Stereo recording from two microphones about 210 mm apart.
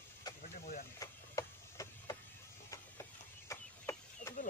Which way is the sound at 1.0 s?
15° left (ahead or behind).